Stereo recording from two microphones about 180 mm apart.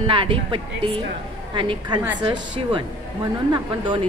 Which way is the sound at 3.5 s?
30° right (ahead or behind).